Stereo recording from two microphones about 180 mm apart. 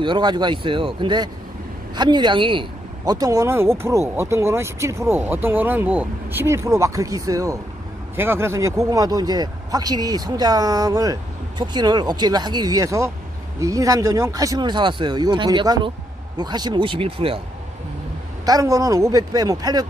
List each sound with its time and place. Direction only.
0.0 s speech: 25° right (ahead or behind)
18.4 s speech: 20° right (ahead or behind)